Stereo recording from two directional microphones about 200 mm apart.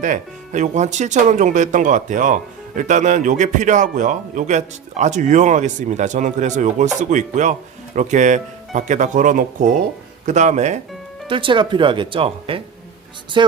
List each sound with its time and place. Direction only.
0.0 s speech: 40° right (ahead or behind)
11.3 s speech: 25° right (ahead or behind)